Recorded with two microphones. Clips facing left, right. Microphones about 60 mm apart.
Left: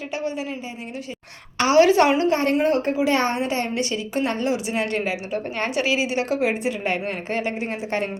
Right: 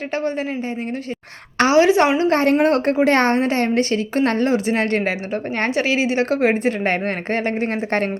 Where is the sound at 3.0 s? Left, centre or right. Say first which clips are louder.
Right 5 dB; right.